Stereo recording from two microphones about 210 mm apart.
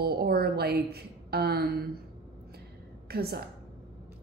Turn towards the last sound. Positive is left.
turn(degrees=-45)  # may be behind; listen again after turning